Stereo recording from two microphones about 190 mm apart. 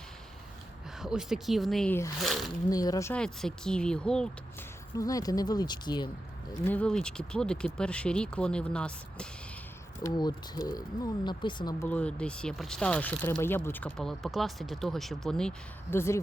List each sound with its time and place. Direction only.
1.0 s speech: 5° right (ahead or behind)
2.6 s speech: 20° left (ahead or behind)
3.2 s speech: 5° left (ahead or behind)
4.9 s speech: 20° left (ahead or behind)
6.7 s speech: 5° left (ahead or behind)
10.0 s speech: 20° left (ahead or behind)
11.9 s speech: 5° left (ahead or behind)